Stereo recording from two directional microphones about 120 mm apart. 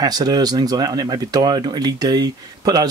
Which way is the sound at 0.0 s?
35° right (ahead or behind).